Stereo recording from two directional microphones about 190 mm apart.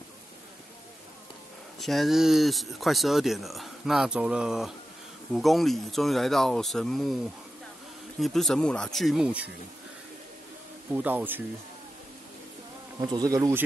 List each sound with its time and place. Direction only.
1.8 s speech: centre (ahead or behind)
8.2 s speech: centre (ahead or behind)
10.9 s speech: 10° right (ahead or behind)
13.0 s speech: 20° right (ahead or behind)